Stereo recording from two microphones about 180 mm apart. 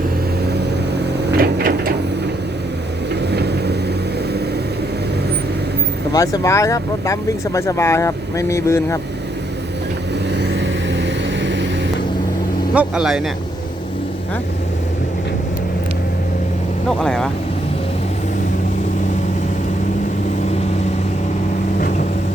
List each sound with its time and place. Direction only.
1.4 s a sound: 55° right (ahead or behind)
3.3 s vehicle: 65° right (ahead or behind)
6.1 s speech: 15° left (ahead or behind)
10.8 s vehicle: 80° right
12.7 s speech: 5° right (ahead or behind)
17.0 s speech: 5° left (ahead or behind)